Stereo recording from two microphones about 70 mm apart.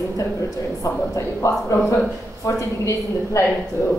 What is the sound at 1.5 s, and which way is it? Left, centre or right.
A woman's voice, left.